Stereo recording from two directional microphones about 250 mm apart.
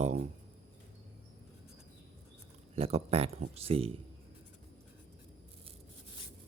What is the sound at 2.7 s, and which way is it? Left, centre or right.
Speech, right.